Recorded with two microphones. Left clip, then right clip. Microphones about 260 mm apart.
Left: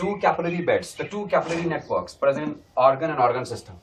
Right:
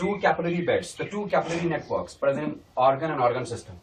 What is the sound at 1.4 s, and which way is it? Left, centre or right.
Speech, centre.